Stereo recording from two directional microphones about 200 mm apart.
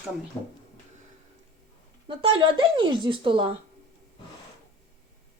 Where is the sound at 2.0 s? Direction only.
25° right (ahead or behind).